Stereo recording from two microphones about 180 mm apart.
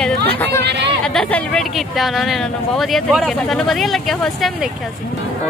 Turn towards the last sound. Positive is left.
turn(degrees=0)  # may be behind; listen again after turning